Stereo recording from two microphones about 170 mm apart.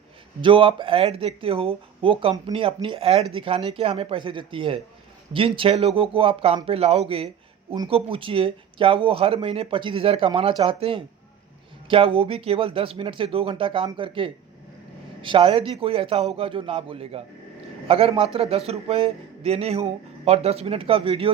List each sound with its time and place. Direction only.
0.4 s speech: 30° right (ahead or behind)